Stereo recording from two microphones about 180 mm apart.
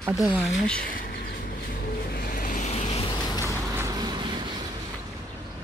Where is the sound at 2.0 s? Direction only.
55° left (ahead or behind); by 3.4 s 25° left (ahead or behind).